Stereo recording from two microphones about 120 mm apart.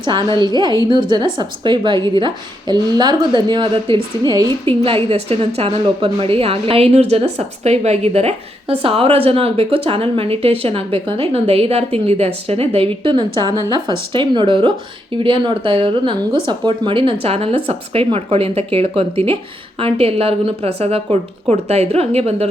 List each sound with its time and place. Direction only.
0.0 s a woman's voice: 40° right (ahead or behind)
4.6 s a woman's voice: 50° right (ahead or behind)